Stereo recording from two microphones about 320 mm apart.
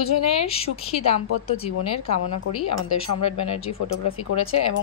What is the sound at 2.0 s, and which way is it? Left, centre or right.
Speech, left.